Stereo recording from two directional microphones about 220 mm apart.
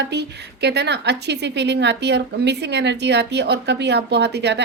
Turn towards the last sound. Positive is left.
turn(degrees=-50)  # may be behind; listen again after turning